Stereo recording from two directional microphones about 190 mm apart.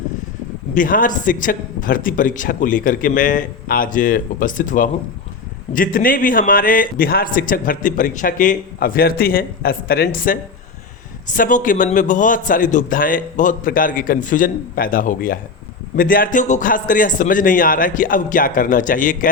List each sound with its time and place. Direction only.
0.7 s a man's voice: 45° left (ahead or behind)